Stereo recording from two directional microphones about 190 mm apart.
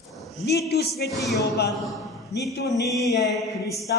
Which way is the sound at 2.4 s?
15° left (ahead or behind).